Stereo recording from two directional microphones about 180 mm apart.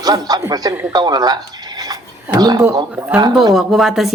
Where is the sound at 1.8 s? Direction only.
20° right (ahead or behind).